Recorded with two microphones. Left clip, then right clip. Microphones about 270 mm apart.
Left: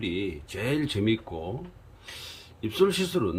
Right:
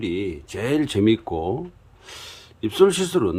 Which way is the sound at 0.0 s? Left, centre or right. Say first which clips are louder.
Right 5 dB; centre.